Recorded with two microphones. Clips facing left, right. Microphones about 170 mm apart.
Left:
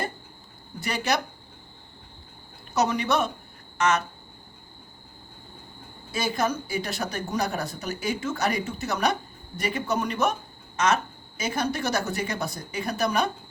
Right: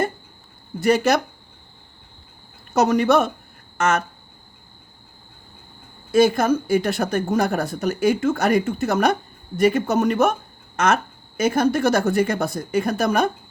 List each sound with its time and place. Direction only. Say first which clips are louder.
0.8 s a woman's voice: right 9 dB; 45° right (ahead or behind)
2.7 s a woman's voice: right 7 dB; 50° right (ahead or behind)
6.1 s a woman's voice: right 10 dB; 50° right (ahead or behind)